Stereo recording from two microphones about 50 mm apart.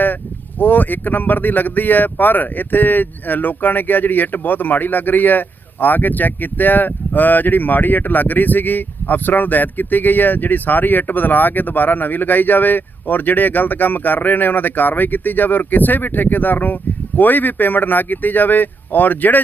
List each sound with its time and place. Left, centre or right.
0.6 s speech: left